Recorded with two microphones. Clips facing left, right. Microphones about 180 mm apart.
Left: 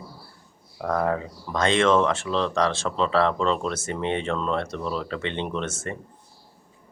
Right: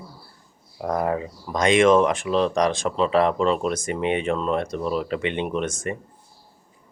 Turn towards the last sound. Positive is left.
turn(degrees=-15)  # may be behind; listen again after turning